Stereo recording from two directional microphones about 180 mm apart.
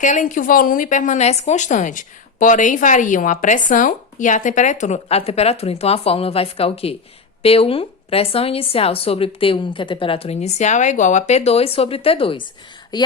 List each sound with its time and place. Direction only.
0.0 s a woman's voice: 45° left (ahead or behind); by 13.1 s 25° left (ahead or behind)